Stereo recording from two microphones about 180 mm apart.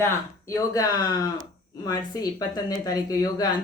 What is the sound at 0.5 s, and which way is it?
Speech, 20° left (ahead or behind).